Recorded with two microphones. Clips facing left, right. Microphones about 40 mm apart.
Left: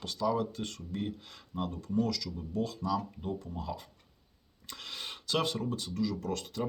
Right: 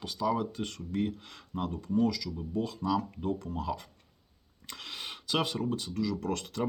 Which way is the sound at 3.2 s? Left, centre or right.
Right.